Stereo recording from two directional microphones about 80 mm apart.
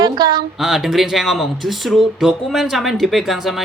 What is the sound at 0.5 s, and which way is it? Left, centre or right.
Speech, centre.